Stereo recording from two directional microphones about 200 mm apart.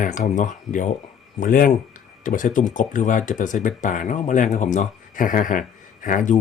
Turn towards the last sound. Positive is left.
turn(degrees=40)  # may be behind; listen again after turning